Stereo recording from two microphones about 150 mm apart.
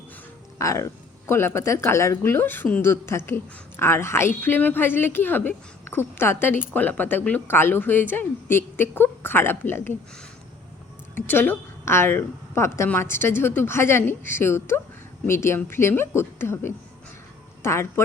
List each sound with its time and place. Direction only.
0.6 s a woman's voice: 20° left (ahead or behind)
11.1 s a woman's voice: 15° left (ahead or behind)